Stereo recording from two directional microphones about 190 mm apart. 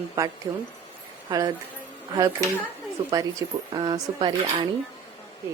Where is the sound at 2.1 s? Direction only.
20° right (ahead or behind).